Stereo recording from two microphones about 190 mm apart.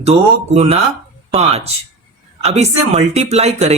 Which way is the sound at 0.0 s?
35° right (ahead or behind).